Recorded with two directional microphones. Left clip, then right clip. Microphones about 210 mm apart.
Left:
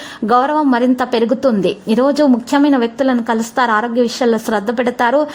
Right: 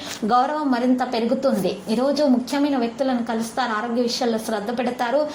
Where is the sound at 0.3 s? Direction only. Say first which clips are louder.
Left 7 dB; 50° left (ahead or behind).